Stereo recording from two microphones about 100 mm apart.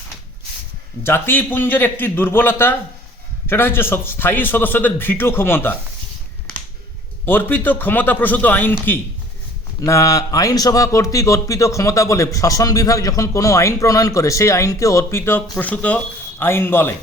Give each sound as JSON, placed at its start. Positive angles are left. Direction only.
{"t": 1.0, "sound": "a man's voice", "side_deg": 25}
{"t": 7.3, "sound": "a man's voice", "side_deg": 20}
{"t": 9.8, "sound": "a man's voice", "side_deg": 35}